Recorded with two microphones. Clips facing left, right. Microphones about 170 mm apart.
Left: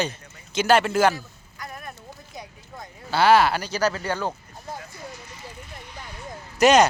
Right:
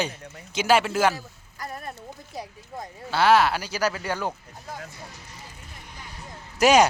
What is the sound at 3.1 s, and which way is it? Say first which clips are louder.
Speech: left 2 dB; centre (ahead or behind).